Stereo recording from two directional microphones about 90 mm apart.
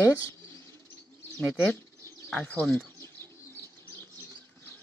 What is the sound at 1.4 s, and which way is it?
Speech, 15° left (ahead or behind).